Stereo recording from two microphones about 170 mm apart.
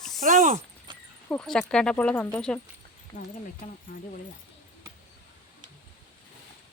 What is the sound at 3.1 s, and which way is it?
Speech, 45° left (ahead or behind).